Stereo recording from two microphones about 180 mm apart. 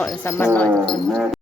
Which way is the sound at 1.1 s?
Centre (ahead or behind).